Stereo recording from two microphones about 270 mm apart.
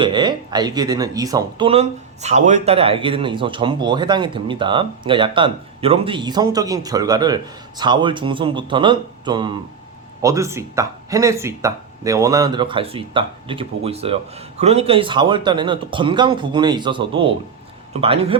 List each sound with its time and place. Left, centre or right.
0.0 s speech: centre